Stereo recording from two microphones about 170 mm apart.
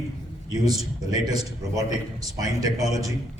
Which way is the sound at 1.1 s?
20° right (ahead or behind).